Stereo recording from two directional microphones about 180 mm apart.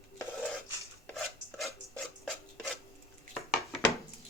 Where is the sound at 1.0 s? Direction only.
Centre (ahead or behind).